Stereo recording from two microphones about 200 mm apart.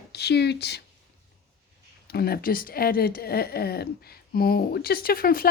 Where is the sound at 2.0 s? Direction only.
50° left (ahead or behind).